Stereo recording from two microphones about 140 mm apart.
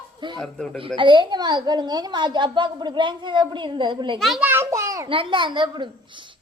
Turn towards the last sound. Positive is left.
turn(degrees=-35)  # may be behind; listen again after turning